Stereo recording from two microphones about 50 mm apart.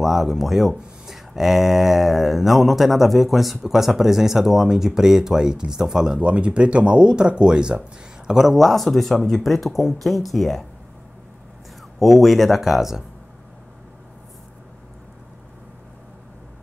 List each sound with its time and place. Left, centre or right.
0.0 s speech: centre
8.3 s speech: centre
12.0 s speech: centre